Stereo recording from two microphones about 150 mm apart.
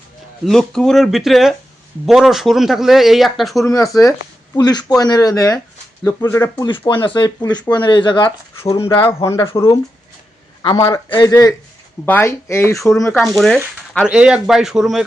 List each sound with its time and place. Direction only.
0.4 s speech: 5° left (ahead or behind)
3.6 s speech: 20° left (ahead or behind)
6.7 s speech: 35° left (ahead or behind)
9.2 s speech: 20° left (ahead or behind)
10.6 s a man's voice: 30° left (ahead or behind)
13.1 s speech: 5° left (ahead or behind)